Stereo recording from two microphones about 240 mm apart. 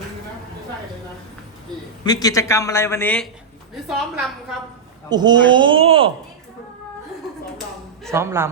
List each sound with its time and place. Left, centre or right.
2.0 s a man's voice: centre
5.0 s speech: centre
8.1 s a man's voice: centre